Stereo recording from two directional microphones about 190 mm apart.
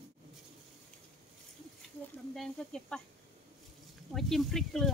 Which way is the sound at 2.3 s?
5° left (ahead or behind).